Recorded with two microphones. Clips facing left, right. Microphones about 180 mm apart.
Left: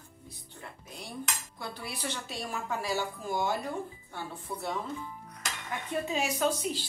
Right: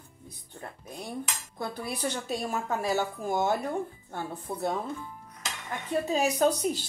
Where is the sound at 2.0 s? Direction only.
45° right (ahead or behind).